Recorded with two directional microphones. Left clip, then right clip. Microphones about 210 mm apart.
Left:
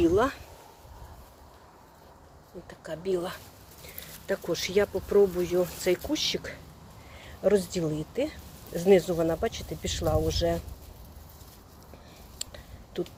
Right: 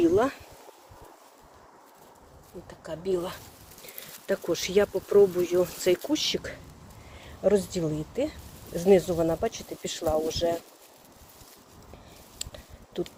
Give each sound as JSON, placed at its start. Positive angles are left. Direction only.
{"t": 0.0, "sound": "speech", "side_deg": -10}
{"t": 2.6, "sound": "speech", "side_deg": -5}
{"t": 3.8, "sound": "speech", "side_deg": -20}
{"t": 7.3, "sound": "speech", "side_deg": -5}
{"t": 12.4, "sound": "a sound", "side_deg": -5}